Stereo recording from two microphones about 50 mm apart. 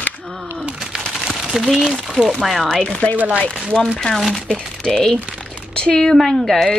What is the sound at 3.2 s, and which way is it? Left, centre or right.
Speech, right.